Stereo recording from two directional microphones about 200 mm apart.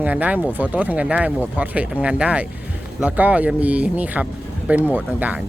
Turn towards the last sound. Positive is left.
turn(degrees=-10)  # may be behind; listen again after turning